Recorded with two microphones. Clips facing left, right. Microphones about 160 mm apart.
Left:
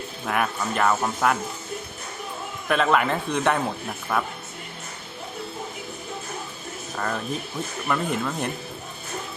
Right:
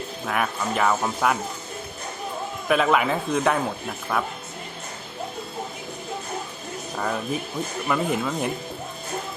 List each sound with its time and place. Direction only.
0.3 s speech: centre (ahead or behind)
2.6 s speech: 5° right (ahead or behind)
6.9 s speech: 10° right (ahead or behind)